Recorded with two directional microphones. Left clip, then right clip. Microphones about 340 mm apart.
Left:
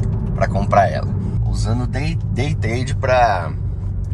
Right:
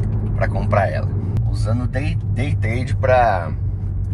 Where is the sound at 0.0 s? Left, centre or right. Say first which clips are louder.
Left 3 dB; centre.